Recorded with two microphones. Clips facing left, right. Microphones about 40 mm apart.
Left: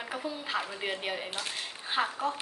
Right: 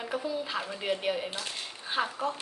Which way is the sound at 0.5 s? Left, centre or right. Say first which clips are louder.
Right 1 dB; centre.